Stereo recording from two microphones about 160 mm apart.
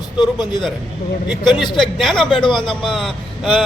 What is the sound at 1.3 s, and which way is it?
A man's voice, centre (ahead or behind).